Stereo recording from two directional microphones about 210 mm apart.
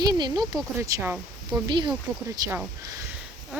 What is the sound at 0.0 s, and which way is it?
Speech, 20° right (ahead or behind).